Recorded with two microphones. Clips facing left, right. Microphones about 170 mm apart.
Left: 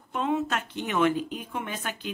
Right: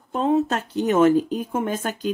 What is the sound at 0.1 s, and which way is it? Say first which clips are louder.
Speech: right 7 dB; 35° right (ahead or behind).